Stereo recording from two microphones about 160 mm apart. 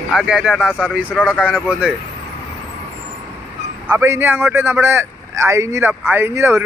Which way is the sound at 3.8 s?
15° right (ahead or behind).